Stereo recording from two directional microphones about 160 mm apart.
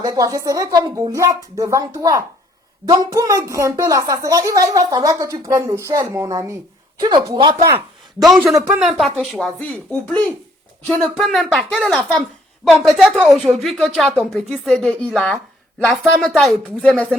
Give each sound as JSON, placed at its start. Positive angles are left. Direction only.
{"t": 0.0, "sound": "a woman's voice", "side_deg": -25}
{"t": 8.5, "sound": "speech", "side_deg": -20}
{"t": 8.8, "sound": "speech", "side_deg": 0}